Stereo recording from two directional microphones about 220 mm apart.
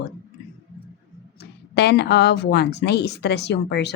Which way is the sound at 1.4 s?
50° left (ahead or behind).